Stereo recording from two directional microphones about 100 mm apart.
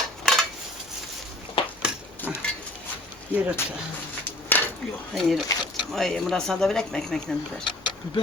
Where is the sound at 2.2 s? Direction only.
20° left (ahead or behind).